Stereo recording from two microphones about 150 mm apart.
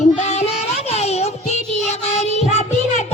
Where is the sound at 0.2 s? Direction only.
50° left (ahead or behind).